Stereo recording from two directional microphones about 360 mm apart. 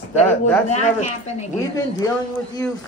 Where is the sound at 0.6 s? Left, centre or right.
Centre.